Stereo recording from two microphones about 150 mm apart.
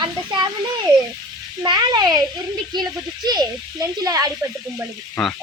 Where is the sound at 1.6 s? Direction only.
30° right (ahead or behind).